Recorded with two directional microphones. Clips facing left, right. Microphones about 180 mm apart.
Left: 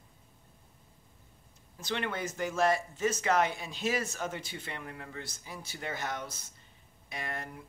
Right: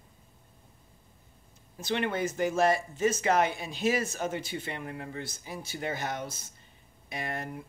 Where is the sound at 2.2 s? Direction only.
25° right (ahead or behind).